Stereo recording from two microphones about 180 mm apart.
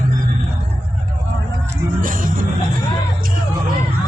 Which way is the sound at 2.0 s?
50° right (ahead or behind).